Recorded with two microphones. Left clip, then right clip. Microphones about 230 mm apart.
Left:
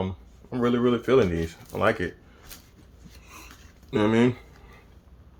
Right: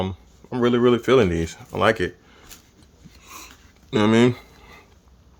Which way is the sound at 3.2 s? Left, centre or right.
Right.